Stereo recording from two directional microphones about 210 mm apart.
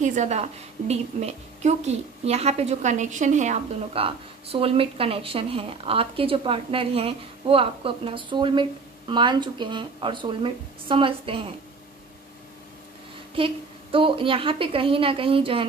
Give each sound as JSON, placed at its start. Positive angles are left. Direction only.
{"t": 0.0, "sound": "a woman's voice", "side_deg": -35}
{"t": 13.4, "sound": "a woman's voice", "side_deg": -25}